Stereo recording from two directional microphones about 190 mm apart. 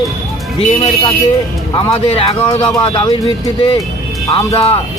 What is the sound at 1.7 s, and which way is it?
Speech, 30° left (ahead or behind).